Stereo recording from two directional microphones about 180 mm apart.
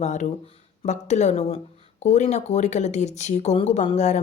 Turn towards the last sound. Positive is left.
turn(degrees=40)  # may be behind; listen again after turning